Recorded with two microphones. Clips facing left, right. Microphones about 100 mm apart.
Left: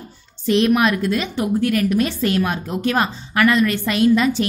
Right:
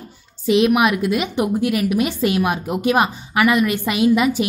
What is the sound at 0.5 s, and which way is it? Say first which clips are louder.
A woman's voice: right 1 dB; 10° right (ahead or behind).